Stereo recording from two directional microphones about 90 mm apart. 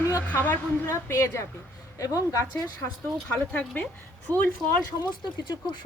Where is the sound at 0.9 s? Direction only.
30° left (ahead or behind).